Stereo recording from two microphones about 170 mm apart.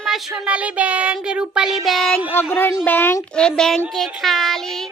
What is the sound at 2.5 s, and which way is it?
A woman's voice, 10° left (ahead or behind).